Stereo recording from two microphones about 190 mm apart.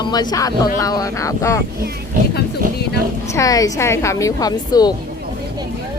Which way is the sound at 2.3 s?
60° left (ahead or behind).